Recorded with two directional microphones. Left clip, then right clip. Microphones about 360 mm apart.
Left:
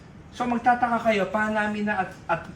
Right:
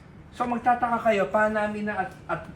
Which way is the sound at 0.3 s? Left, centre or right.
Centre.